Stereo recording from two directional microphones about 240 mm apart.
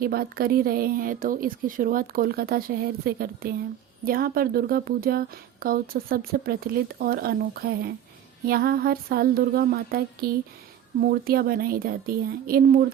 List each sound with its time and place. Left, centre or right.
0.0 s speech: right